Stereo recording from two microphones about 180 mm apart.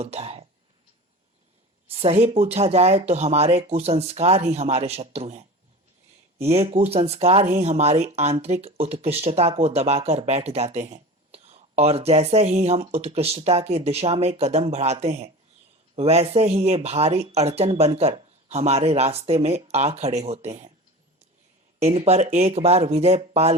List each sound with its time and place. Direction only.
0.0 s speech: 35° right (ahead or behind)
1.9 s speech: 35° right (ahead or behind)
21.8 s speech: 35° right (ahead or behind)